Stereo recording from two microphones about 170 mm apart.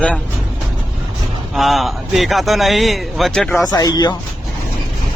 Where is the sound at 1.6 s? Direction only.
Centre (ahead or behind).